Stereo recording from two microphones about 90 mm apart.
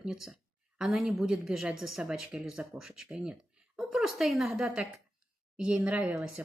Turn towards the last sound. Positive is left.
turn(degrees=-10)  # may be behind; listen again after turning